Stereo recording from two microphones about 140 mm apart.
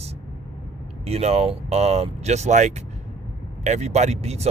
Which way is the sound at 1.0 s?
45° right (ahead or behind).